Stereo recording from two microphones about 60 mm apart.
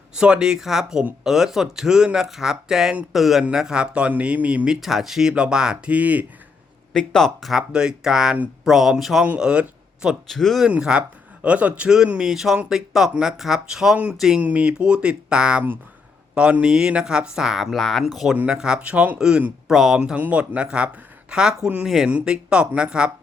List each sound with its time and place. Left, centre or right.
0.2 s speech: centre
4.7 s speech: centre
5.9 s speech: right
6.9 s speech: centre
7.7 s speech: centre
9.4 s speech: centre
10.2 s speech: centre
10.7 s speech: centre
12.3 s speech: centre
13.9 s speech: right; by 18.3 s centre
18.3 s speech: centre
20.0 s speech: centre